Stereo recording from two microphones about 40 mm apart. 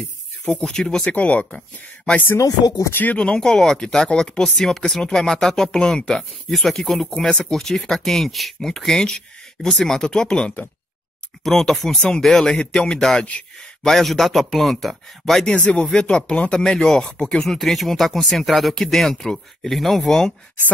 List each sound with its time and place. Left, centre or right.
0.5 s speech: left
0.8 s speech: centre
1.1 s speech: left
2.9 s speech: left
3.3 s speech: centre
6.5 s speech: centre
7.2 s speech: left
7.5 s speech: centre
11.4 s speech: centre
13.8 s speech: centre
15.4 s speech: left
16.6 s speech: centre
17.6 s speech: centre